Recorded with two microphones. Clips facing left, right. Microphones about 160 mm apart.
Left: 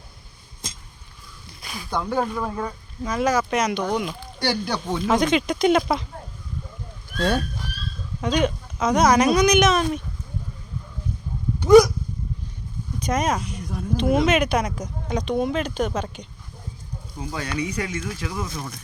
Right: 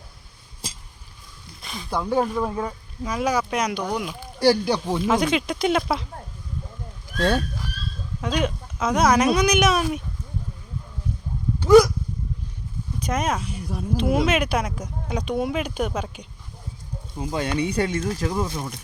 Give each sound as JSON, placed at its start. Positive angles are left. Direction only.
{"t": 1.6, "sound": "speech", "side_deg": 0}
{"t": 7.2, "sound": "speech", "side_deg": 0}
{"t": 13.1, "sound": "speech", "side_deg": -5}
{"t": 17.3, "sound": "speech", "side_deg": -25}